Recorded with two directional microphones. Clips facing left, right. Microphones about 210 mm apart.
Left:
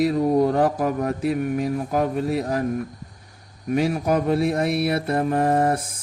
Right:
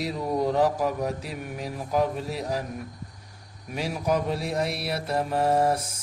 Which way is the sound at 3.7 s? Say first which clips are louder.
Left 6 dB; 55° left (ahead or behind).